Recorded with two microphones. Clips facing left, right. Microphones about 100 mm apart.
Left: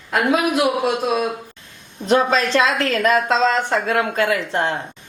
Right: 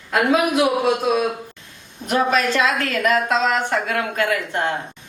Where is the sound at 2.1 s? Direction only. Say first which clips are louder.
Left 2 dB; 30° left (ahead or behind).